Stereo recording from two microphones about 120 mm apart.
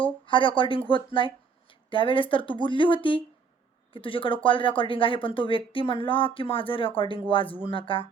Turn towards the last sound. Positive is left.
turn(degrees=45)  # may be behind; listen again after turning